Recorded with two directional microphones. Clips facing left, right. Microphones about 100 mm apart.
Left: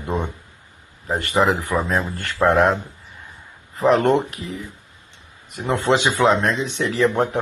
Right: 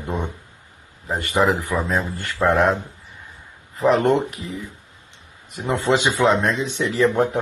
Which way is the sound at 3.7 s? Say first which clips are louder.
Left 1 dB; centre (ahead or behind).